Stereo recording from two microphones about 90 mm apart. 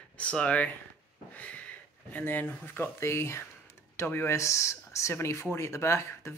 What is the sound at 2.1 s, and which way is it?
Speech, 20° left (ahead or behind).